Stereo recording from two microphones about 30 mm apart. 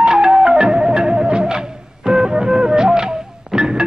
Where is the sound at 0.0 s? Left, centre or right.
Right.